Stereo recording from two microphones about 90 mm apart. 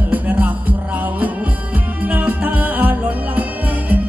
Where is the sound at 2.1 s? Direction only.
20° right (ahead or behind).